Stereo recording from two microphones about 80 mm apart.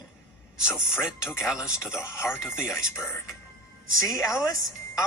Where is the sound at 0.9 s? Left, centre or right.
Centre.